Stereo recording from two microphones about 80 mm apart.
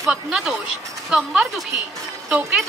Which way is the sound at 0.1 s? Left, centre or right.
Centre.